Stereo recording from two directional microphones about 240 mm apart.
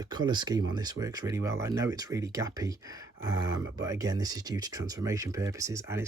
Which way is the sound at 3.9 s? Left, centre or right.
Centre.